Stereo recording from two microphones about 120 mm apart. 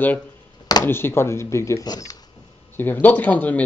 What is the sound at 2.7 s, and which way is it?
Speech, 15° left (ahead or behind).